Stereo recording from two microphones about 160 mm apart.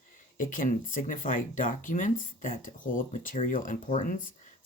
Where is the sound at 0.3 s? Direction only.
55° left (ahead or behind).